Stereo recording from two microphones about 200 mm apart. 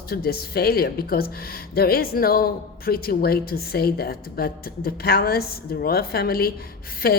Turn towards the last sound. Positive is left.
turn(degrees=50)  # may be behind; listen again after turning